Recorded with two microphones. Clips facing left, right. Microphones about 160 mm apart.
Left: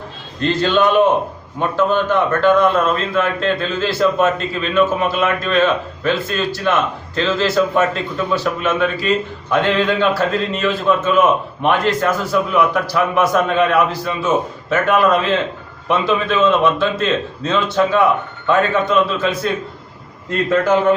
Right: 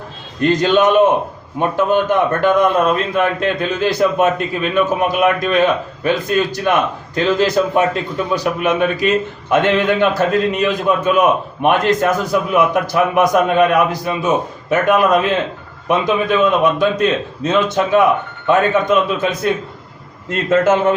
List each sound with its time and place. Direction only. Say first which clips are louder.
0.4 s a man's voice: right 2 dB; 15° right (ahead or behind)
20.5 s a man's voice: right 2 dB; 25° right (ahead or behind)